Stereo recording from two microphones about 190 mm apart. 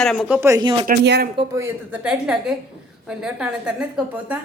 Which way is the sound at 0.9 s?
55° right (ahead or behind).